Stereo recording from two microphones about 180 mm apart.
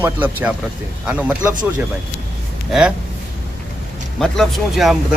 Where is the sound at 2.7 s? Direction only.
5° right (ahead or behind).